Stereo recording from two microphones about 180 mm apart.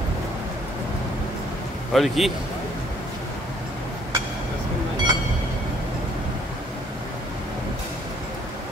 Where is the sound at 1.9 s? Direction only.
Centre (ahead or behind).